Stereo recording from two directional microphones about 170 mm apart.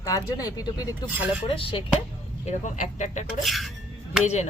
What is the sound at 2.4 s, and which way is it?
Speech, 45° left (ahead or behind).